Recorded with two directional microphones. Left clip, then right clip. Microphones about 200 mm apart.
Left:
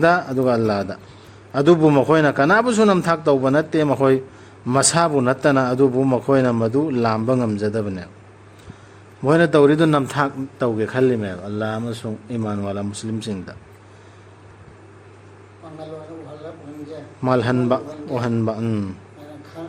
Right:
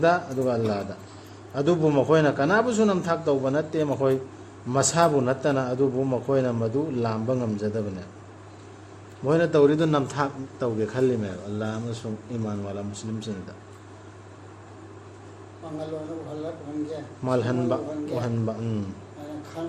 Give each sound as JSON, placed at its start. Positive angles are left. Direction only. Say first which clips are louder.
{"t": 0.0, "sound": "a man's voice", "louder": "left 6 dB", "side_deg": 50}
{"t": 9.2, "sound": "a man's voice", "louder": "left 6 dB", "side_deg": 45}
{"t": 17.2, "sound": "a man's voice", "louder": "left 6 dB", "side_deg": 45}
{"t": 19.6, "sound": "speech", "louder": "right 1 dB", "side_deg": 5}